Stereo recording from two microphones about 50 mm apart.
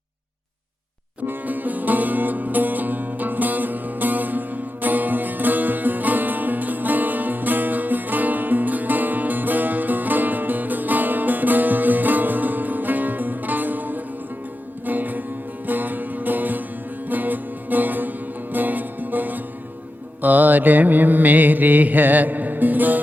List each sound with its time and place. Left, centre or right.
1.3 s music: right
20.2 s mantra: right